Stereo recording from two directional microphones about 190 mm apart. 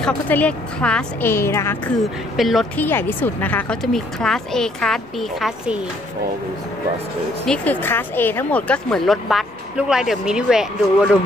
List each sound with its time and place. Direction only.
0.0 s a woman's voice: 5° left (ahead or behind)
2.3 s speech: centre (ahead or behind)
2.8 s speech: 10° left (ahead or behind)
7.4 s speech: 5° left (ahead or behind)